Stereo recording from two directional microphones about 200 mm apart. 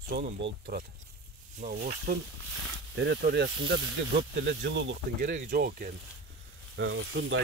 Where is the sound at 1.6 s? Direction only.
45° right (ahead or behind).